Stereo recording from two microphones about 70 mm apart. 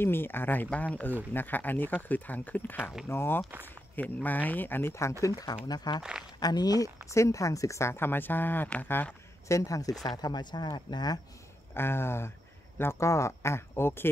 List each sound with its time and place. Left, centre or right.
0.0 s speech: left
5.2 s speech: left
5.7 s speech: left
6.4 s speech: left
7.1 s speech: left
9.5 s speech: left
10.1 s speech: left
11.7 s speech: left